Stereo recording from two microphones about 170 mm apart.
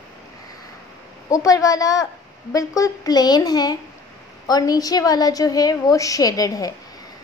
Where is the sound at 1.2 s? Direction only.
20° left (ahead or behind).